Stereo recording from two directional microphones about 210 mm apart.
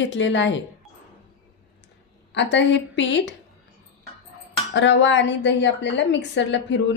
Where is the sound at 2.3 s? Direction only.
60° left (ahead or behind).